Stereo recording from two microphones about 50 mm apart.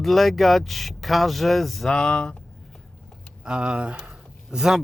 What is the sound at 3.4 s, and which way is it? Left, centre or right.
Speech, centre.